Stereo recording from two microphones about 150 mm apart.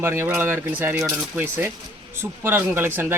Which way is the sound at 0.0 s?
15° right (ahead or behind).